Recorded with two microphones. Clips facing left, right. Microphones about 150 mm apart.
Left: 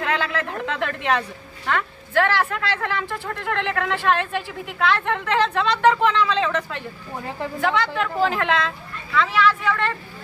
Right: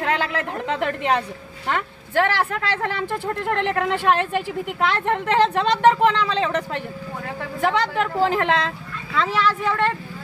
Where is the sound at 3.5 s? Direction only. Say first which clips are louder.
Right 1 dB; 45° right (ahead or behind).